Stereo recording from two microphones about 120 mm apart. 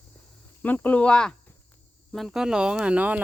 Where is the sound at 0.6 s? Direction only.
15° left (ahead or behind).